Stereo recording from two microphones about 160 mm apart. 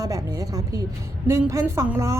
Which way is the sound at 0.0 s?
20° right (ahead or behind).